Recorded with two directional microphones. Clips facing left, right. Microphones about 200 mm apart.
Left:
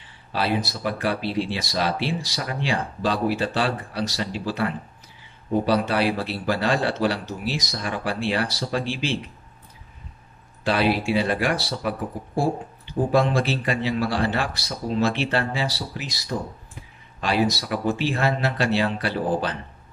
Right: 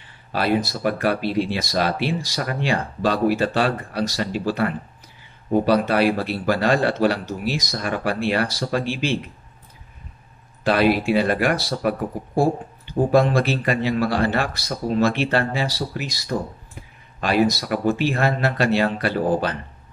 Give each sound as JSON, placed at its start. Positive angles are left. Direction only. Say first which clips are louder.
{"t": 0.3, "sound": "speech", "louder": "right 3 dB", "side_deg": -50}
{"t": 10.6, "sound": "speech", "louder": "right 4 dB", "side_deg": -50}
{"t": 13.1, "sound": "speech", "louder": "right 3 dB", "side_deg": -55}